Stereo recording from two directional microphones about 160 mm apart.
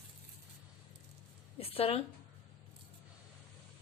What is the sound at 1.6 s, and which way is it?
Speech, 40° left (ahead or behind).